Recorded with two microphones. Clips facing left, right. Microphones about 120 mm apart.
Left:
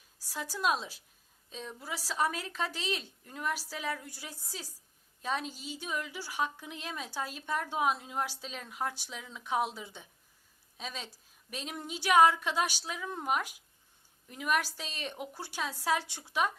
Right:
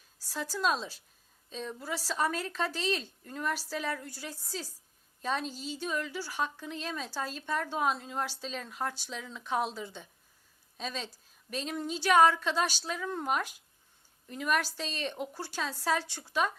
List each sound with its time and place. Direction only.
0.3 s a woman's voice: 10° left (ahead or behind)